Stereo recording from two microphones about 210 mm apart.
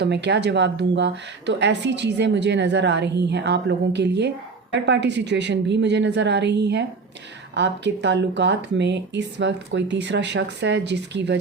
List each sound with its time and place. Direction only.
0.0 s speech: 55° right (ahead or behind)